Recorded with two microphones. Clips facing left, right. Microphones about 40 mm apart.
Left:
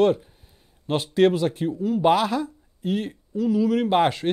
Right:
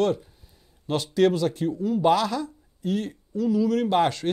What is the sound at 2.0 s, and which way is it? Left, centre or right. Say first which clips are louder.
Speech: left 2 dB; centre.